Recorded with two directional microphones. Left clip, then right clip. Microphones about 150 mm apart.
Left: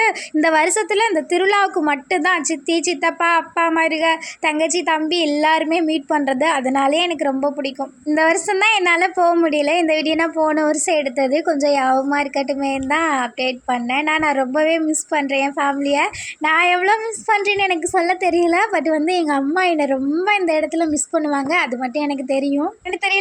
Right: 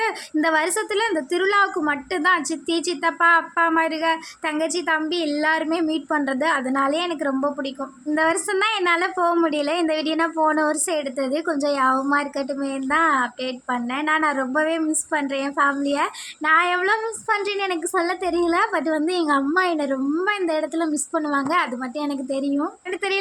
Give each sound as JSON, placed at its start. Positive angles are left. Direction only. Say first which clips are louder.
{"t": 0.0, "sound": "speech", "louder": "left 5 dB", "side_deg": 25}